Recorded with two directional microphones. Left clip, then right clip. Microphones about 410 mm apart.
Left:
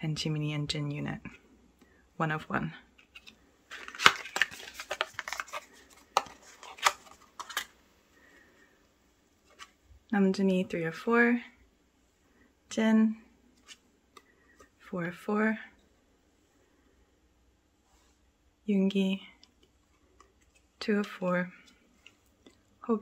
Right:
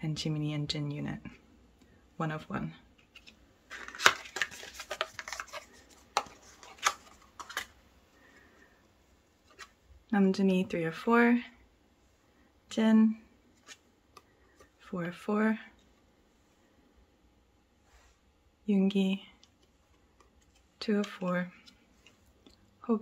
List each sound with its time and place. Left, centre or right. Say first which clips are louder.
0.0 s speech: left 1 dB; centre
3.1 s a sound: even; centre
3.7 s a sound: left 2 dB; centre
7.3 s tick-tock: left 2 dB; centre
10.0 s speech: even; centre
12.6 s speech: even; centre
14.8 s speech: left 2 dB; centre
18.7 s speech: left 1 dB; centre
20.8 s speech: left 2 dB; centre
22.4 s whispering: left 3 dB; centre